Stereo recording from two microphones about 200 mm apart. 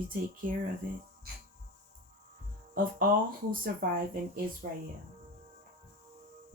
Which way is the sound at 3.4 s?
45° right (ahead or behind).